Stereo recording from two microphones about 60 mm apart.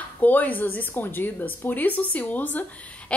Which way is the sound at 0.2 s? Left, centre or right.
Left.